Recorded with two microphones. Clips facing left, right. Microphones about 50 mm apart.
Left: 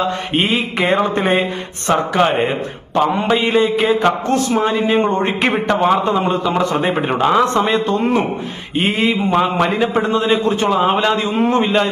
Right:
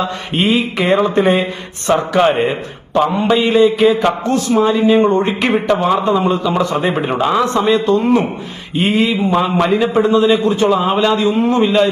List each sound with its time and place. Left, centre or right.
0.3 s a man's voice: left
1.9 s speech: centre
2.9 s a man's voice: left
6.8 s speech: centre
7.7 s a man's voice: left
10.7 s a man's voice: left
11.6 s a man's voice: left